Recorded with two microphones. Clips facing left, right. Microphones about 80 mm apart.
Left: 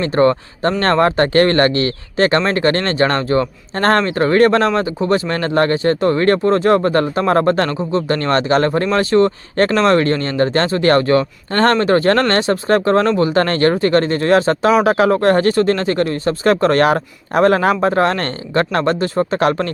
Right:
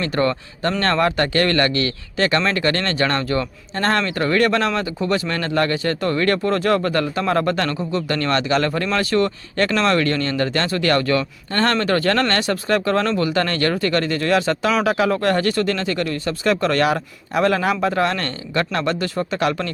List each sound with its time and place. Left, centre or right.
0.0 s speech: left